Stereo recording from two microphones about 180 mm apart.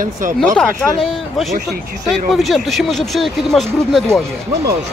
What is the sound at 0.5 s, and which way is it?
Speech, 5° left (ahead or behind).